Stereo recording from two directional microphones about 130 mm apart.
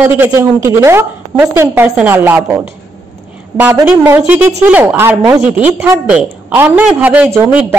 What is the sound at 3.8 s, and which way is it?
Speech, 15° right (ahead or behind).